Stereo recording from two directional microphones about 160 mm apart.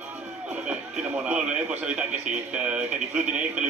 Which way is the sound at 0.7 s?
10° right (ahead or behind).